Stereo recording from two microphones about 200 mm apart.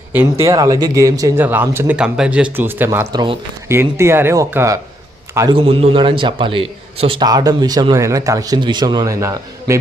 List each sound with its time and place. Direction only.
0.1 s a man's voice: 10° right (ahead or behind)
5.5 s a man's voice: 25° right (ahead or behind)